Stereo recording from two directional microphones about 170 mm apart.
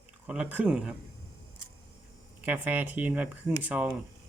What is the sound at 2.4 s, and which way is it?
Speech, 10° right (ahead or behind).